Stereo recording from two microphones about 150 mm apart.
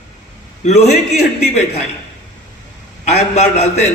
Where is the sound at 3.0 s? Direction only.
50° left (ahead or behind).